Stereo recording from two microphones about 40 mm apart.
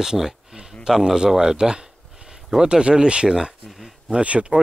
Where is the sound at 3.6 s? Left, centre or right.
Centre.